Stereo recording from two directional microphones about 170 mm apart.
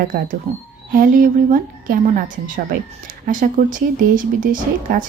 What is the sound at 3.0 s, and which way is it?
A woman's voice, 50° right (ahead or behind).